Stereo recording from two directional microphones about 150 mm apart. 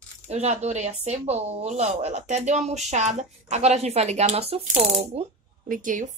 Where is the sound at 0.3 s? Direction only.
45° right (ahead or behind).